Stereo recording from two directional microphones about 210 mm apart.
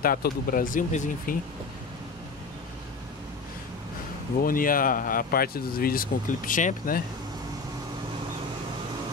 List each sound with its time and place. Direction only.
0.0 s speech: 45° left (ahead or behind)
4.4 s speech: 40° left (ahead or behind)